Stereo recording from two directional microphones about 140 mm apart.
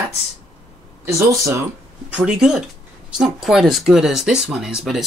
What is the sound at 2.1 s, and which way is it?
Speech, 5° right (ahead or behind).